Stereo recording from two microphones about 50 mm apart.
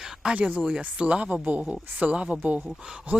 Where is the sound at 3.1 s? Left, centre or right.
Right.